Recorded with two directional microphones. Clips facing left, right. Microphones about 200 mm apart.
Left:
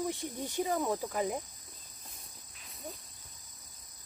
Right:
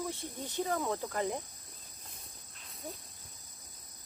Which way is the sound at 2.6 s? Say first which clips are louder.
Right 1 dB; centre (ahead or behind).